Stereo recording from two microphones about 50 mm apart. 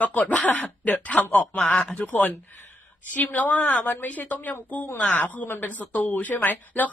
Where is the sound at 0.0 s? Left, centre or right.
Left.